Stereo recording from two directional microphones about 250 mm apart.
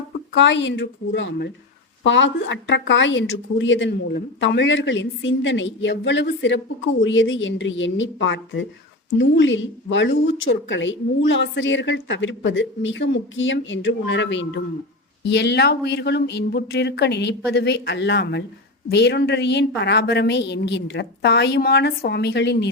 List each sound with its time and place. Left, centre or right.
0.3 s a woman's voice: left